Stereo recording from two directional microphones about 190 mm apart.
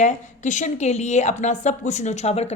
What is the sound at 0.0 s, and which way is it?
A woman's voice, 40° left (ahead or behind).